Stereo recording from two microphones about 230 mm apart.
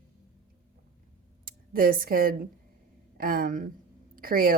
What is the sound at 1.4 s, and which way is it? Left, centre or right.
A woman's voice, right.